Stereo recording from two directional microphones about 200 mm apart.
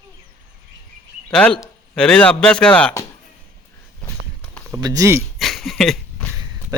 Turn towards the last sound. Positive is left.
turn(degrees=0)  # may be behind; listen again after turning